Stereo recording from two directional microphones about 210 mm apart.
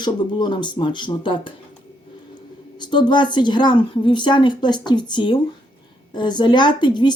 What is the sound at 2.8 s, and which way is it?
A woman's voice, 20° left (ahead or behind).